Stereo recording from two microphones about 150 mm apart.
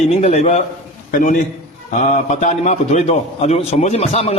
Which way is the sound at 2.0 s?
50° left (ahead or behind).